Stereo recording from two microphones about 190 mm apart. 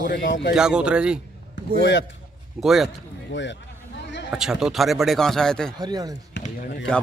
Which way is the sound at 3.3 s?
70° left (ahead or behind).